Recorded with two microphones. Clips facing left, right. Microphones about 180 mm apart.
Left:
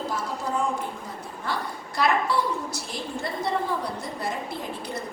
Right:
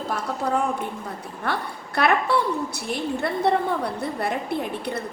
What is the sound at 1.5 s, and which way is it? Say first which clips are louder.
A woman's voice: right 3 dB; 65° right (ahead or behind).